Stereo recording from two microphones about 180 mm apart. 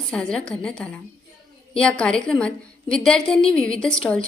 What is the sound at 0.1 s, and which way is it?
A woman's voice, 5° left (ahead or behind).